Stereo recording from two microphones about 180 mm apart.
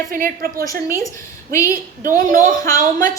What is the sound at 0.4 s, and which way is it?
Speech, 55° right (ahead or behind).